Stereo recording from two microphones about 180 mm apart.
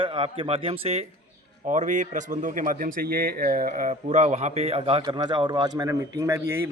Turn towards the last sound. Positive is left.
turn(degrees=-15)  # may be behind; listen again after turning